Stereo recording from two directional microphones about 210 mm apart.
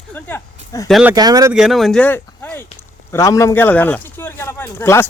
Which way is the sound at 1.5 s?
Centre (ahead or behind).